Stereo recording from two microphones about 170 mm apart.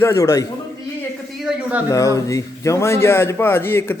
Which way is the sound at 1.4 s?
10° right (ahead or behind).